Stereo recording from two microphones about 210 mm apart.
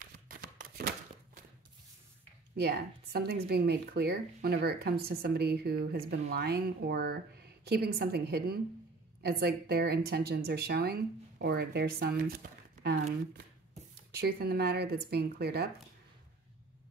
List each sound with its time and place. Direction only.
0.0 s a sound: 40° right (ahead or behind)
2.5 s speech: 50° right (ahead or behind)
14.1 s speech: 45° right (ahead or behind)